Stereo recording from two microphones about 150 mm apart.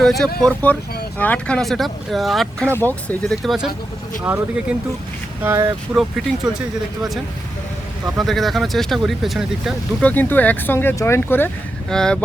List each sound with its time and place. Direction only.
0.0 s speech: centre (ahead or behind)
2.7 s speech: 10° left (ahead or behind)
3.4 s speech: centre (ahead or behind)
4.2 s speech: 15° right (ahead or behind)
6.0 s speech: 5° right (ahead or behind)
8.2 s speech: centre (ahead or behind)
10.0 s speech: 10° left (ahead or behind)